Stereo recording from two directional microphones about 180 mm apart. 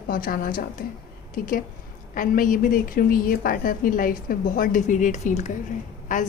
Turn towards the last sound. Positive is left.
turn(degrees=45)  # may be behind; listen again after turning